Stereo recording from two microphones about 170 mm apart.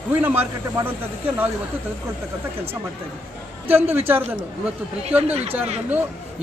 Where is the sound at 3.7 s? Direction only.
10° right (ahead or behind).